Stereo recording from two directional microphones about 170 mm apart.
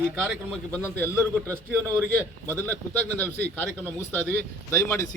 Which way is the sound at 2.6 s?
10° left (ahead or behind).